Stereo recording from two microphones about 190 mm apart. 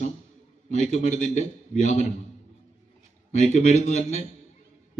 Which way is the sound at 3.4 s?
35° left (ahead or behind).